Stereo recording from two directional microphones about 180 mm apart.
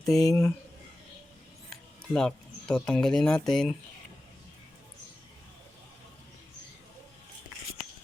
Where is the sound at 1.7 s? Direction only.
5° left (ahead or behind).